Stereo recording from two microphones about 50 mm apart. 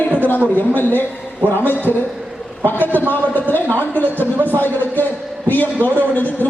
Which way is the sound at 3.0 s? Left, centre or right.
Left.